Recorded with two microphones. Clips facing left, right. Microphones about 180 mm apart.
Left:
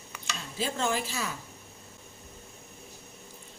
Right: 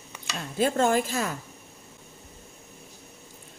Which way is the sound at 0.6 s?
50° right (ahead or behind).